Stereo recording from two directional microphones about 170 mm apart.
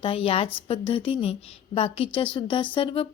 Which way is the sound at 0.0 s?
35° left (ahead or behind).